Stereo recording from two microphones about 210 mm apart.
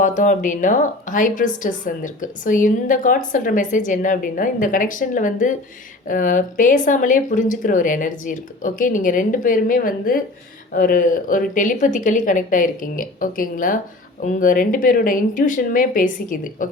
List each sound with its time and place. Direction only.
0.0 s a woman's voice: 35° left (ahead or behind)